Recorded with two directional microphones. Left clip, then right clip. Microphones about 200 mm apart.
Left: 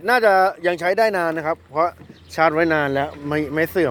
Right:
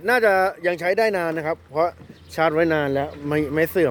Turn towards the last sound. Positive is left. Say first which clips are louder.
# even
turn(degrees=-20)  # may be behind; listen again after turning